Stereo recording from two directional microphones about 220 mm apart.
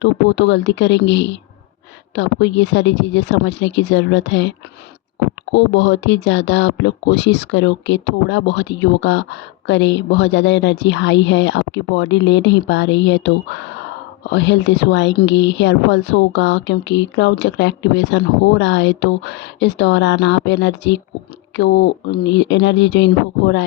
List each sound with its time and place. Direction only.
0.0 s speech: 55° left (ahead or behind)